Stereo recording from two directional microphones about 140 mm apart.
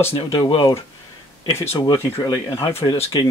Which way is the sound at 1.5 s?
20° left (ahead or behind).